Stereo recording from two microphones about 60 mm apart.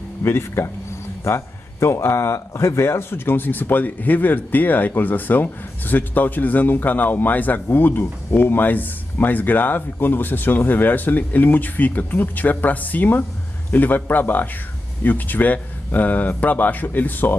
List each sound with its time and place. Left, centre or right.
0.2 s speech: left